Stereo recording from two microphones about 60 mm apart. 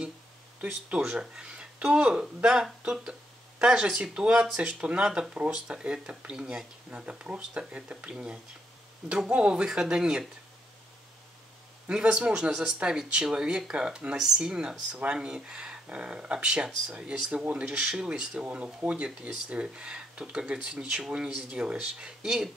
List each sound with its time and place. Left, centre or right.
0.6 s speech: centre
11.9 s speech: centre